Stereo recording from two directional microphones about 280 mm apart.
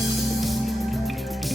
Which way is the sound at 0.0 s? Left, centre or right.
Centre.